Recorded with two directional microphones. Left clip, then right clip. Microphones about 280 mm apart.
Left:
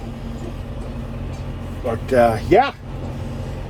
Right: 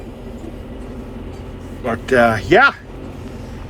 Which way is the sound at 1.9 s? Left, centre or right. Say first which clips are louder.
Right 2 dB; right.